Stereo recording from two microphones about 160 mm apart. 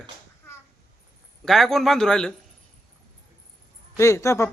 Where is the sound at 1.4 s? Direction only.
Centre (ahead or behind).